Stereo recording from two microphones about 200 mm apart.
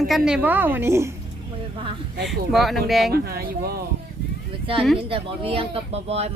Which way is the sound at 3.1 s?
50° right (ahead or behind).